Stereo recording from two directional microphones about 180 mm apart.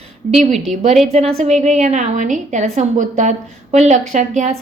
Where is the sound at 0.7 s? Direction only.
Centre (ahead or behind).